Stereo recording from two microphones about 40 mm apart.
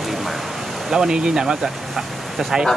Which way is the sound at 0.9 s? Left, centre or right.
Centre.